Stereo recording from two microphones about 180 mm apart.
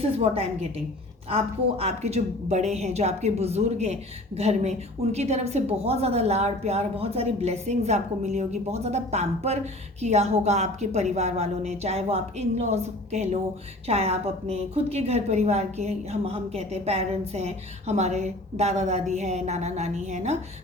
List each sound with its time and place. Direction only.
0.0 s a woman's voice: 35° right (ahead or behind)
1.8 s a woman's voice: 35° right (ahead or behind)